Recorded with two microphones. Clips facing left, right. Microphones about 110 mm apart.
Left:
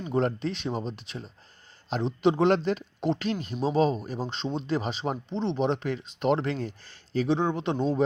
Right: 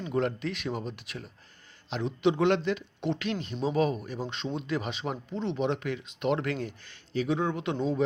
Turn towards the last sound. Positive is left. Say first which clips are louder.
# left 3 dB
turn(degrees=35)  # may be behind; listen again after turning